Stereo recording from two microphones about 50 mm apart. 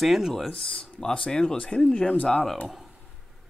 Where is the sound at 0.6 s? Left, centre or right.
Centre.